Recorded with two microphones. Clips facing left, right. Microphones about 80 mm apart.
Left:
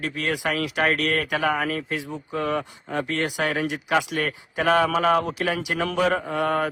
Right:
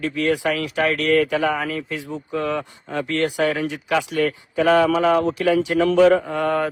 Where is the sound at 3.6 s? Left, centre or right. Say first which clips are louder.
Right 1 dB; left.